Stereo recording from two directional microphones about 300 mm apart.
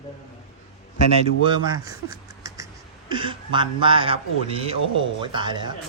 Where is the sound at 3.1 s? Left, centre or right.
Centre.